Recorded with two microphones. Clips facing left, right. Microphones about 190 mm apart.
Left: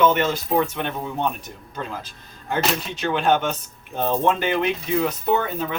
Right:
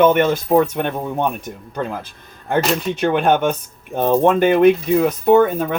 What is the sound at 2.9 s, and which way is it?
Speech, 55° right (ahead or behind).